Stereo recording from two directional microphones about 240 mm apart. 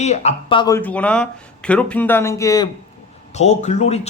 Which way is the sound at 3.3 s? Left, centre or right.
Left.